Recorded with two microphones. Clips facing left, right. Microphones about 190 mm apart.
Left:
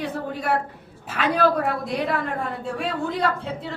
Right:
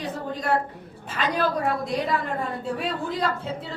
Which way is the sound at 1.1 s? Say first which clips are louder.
Left 4 dB; 60° left (ahead or behind).